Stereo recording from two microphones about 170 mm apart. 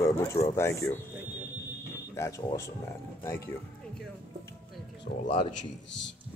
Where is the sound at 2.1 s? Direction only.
15° left (ahead or behind).